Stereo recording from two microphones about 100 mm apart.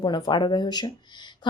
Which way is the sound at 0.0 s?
50° left (ahead or behind).